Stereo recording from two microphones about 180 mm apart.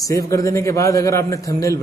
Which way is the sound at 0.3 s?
15° left (ahead or behind).